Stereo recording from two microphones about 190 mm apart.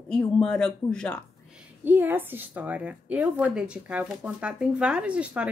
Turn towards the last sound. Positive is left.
turn(degrees=-5)  # may be behind; listen again after turning